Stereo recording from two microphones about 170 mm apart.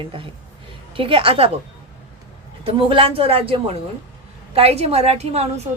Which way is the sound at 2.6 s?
30° right (ahead or behind).